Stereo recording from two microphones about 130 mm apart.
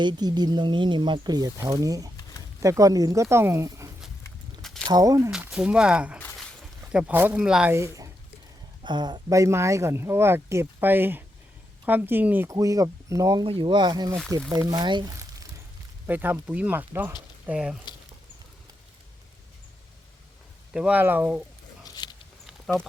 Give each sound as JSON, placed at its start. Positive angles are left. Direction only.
{"t": 0.0, "sound": "speech", "side_deg": -35}
{"t": 4.6, "sound": "a sound", "side_deg": 5}
{"t": 4.9, "sound": "speech", "side_deg": -30}
{"t": 5.3, "sound": "speech", "side_deg": -5}
{"t": 7.7, "sound": "speech", "side_deg": -20}
{"t": 8.8, "sound": "speech", "side_deg": -35}
{"t": 12.5, "sound": "speech", "side_deg": -25}
{"t": 16.0, "sound": "speech", "side_deg": -15}
{"t": 20.7, "sound": "speech", "side_deg": -10}
{"t": 21.8, "sound": "a sound", "side_deg": 30}
{"t": 22.4, "sound": "a sound", "side_deg": 0}